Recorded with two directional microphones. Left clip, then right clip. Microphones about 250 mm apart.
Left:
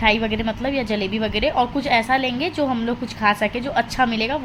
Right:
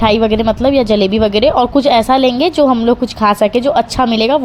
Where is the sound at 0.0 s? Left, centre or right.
Right.